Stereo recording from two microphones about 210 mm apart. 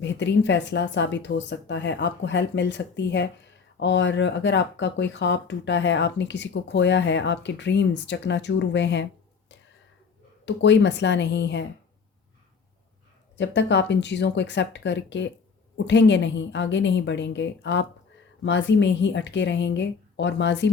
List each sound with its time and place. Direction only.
0.0 s speech: 55° left (ahead or behind)
10.4 s speech: 60° left (ahead or behind)
13.4 s speech: 55° left (ahead or behind)